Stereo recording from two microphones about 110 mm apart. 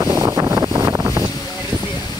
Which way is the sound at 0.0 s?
20° right (ahead or behind).